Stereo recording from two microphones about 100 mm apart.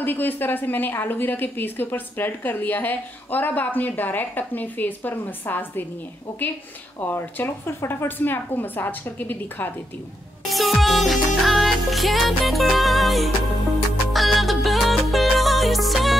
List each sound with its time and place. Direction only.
0.0 s a woman's voice: 20° left (ahead or behind)
7.0 s a woman's voice: 20° left (ahead or behind)
10.5 s music: centre (ahead or behind)